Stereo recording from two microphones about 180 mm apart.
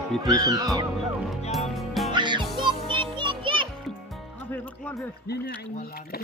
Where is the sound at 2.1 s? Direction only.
25° right (ahead or behind).